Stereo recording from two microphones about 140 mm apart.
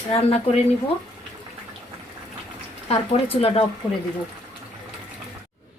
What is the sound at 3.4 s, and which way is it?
Speech, 45° left (ahead or behind).